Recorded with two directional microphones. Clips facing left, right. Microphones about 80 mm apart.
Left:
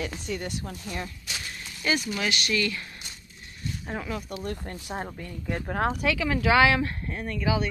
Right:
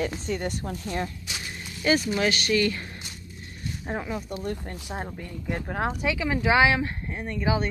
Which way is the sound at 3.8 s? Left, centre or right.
Right.